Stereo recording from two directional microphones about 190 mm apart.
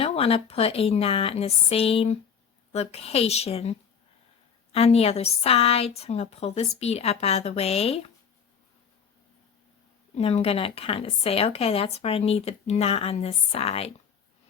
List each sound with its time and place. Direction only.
0.0 s a woman's voice: 30° left (ahead or behind)
10.2 s a woman's voice: 30° left (ahead or behind)